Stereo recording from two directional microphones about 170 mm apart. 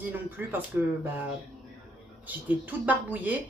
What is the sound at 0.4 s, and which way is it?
Speech, 10° right (ahead or behind).